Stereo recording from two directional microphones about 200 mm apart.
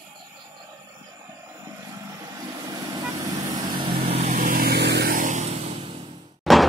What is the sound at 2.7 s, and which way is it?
Vehicle, 20° right (ahead or behind).